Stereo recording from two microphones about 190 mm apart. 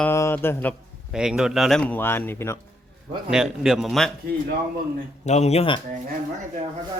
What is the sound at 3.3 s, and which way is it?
Speech, 5° right (ahead or behind).